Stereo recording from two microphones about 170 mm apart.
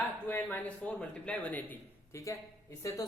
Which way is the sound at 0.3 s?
10° left (ahead or behind).